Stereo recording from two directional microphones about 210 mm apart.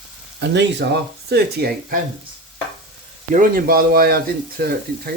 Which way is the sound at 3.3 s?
40° right (ahead or behind).